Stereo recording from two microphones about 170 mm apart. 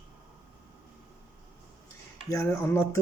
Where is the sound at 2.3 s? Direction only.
15° left (ahead or behind).